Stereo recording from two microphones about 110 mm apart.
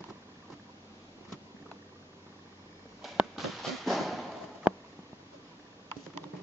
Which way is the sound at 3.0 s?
Centre (ahead or behind).